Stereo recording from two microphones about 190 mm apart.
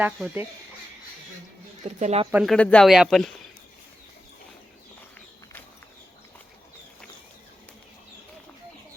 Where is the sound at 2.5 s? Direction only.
5° left (ahead or behind).